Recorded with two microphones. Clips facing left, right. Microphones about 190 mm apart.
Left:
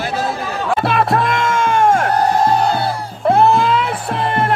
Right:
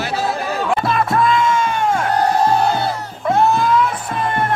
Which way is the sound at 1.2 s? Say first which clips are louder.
Right 2 dB; 80° left.